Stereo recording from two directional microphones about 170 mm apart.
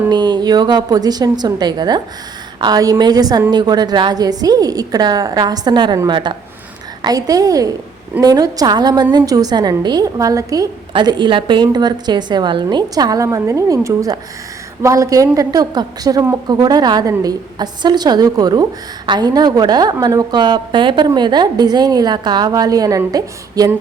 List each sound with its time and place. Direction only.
0.1 s a woman's voice: 25° right (ahead or behind)